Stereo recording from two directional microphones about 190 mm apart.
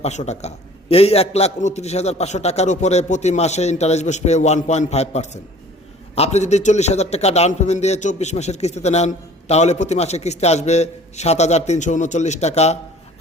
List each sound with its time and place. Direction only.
0.0 s a man's voice: 35° left (ahead or behind)